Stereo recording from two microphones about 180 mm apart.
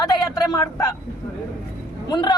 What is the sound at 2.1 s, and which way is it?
Speech, 25° left (ahead or behind).